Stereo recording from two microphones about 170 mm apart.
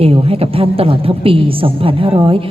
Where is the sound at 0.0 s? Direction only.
35° right (ahead or behind).